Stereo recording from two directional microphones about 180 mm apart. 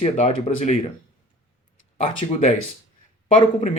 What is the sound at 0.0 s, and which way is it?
Speech, 40° left (ahead or behind).